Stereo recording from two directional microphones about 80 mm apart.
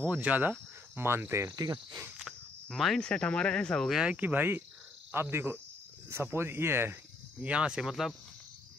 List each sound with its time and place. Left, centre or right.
0.0 s speech: right
1.5 s cricket: right
2.2 s speech: centre
3.9 s speech: centre; by 7.0 s right
7.3 s speech: centre